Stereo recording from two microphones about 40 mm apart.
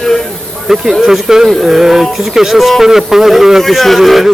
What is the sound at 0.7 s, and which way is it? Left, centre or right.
A man's voice, centre.